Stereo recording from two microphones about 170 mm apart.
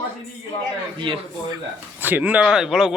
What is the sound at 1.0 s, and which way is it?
Speech, 30° right (ahead or behind).